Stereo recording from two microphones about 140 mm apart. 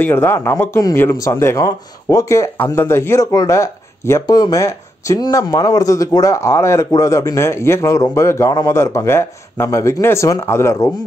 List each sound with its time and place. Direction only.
0.0 s speech: 15° left (ahead or behind)